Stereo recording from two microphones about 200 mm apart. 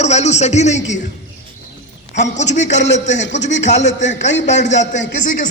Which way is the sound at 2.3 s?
35° left (ahead or behind).